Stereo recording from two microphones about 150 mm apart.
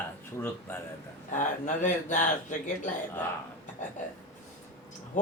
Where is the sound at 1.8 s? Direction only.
55° left (ahead or behind).